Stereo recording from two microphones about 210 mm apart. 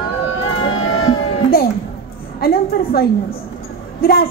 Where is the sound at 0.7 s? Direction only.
75° left (ahead or behind).